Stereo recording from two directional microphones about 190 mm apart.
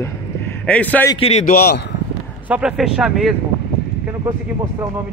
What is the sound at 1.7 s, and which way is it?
Speech, 65° left (ahead or behind).